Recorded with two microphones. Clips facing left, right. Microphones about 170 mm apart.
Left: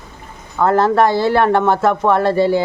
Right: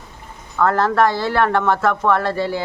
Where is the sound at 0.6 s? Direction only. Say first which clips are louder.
Left 3 dB; 20° left (ahead or behind).